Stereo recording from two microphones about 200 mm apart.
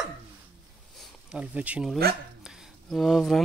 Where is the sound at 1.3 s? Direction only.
5° right (ahead or behind).